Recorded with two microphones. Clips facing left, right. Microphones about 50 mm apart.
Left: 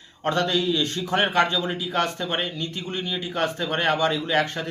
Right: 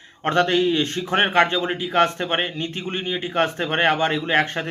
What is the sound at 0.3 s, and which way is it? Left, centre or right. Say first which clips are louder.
A man's voice: right 4 dB; right.